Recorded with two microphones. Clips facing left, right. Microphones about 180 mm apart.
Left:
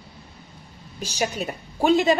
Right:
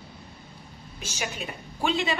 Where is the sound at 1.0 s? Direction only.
35° left (ahead or behind).